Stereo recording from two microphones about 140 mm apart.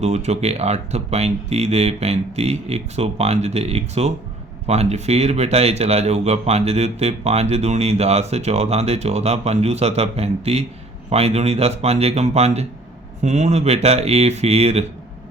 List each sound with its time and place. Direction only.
0.0 s speech: 50° right (ahead or behind)